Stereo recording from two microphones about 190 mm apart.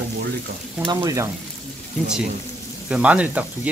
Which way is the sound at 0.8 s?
15° right (ahead or behind).